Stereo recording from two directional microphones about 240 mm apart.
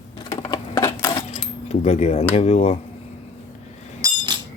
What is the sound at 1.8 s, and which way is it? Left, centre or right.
Speech, left.